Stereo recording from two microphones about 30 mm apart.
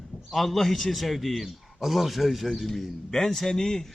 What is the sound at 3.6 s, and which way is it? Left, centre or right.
Speech, centre.